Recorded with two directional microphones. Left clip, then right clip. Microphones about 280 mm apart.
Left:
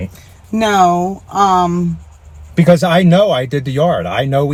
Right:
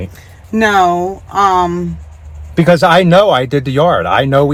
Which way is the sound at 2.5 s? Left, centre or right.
Centre.